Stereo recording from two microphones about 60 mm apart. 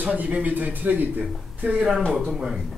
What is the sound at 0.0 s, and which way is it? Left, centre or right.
A man's voice, right.